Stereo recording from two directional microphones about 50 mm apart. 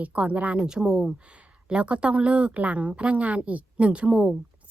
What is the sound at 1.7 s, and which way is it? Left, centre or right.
Speech, right.